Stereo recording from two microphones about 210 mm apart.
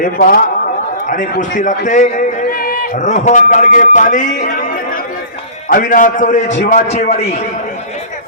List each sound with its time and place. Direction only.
0.0 s a man's voice: 40° left (ahead or behind)